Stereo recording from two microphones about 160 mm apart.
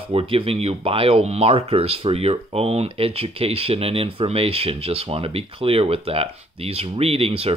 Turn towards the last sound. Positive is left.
turn(degrees=-35)  # may be behind; listen again after turning